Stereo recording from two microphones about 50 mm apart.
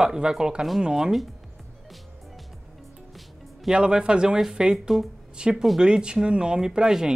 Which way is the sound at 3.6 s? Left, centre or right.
Centre.